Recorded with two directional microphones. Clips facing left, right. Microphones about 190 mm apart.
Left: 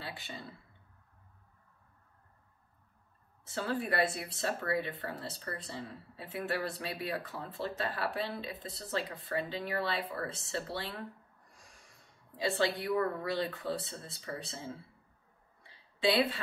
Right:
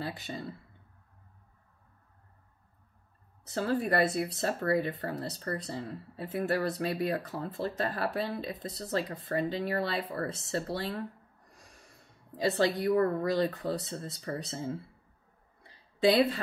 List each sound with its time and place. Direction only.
0.0 s speech: 40° right (ahead or behind)
3.4 s speech: 40° right (ahead or behind)
12.4 s speech: 40° right (ahead or behind)
15.6 s a sound: 40° right (ahead or behind)